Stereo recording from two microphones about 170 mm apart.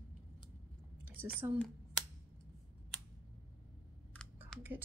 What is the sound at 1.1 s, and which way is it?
Speech, 10° right (ahead or behind).